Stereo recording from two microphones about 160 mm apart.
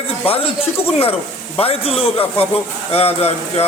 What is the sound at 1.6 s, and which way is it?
A man's voice, 35° left (ahead or behind).